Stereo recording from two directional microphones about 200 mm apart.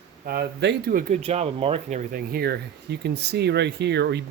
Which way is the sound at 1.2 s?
30° right (ahead or behind).